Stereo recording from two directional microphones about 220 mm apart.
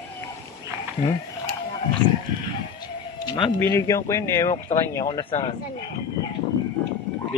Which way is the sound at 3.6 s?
15° left (ahead or behind).